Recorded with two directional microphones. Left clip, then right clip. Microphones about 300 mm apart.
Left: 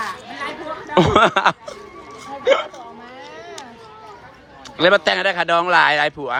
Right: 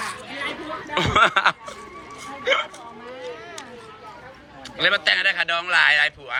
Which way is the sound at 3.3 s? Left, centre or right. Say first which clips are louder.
Left 2 dB; left.